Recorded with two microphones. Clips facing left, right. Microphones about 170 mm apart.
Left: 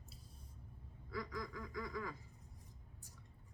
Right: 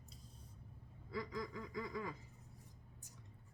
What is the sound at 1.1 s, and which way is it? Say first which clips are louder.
Speech: right 1 dB; 25° right (ahead or behind).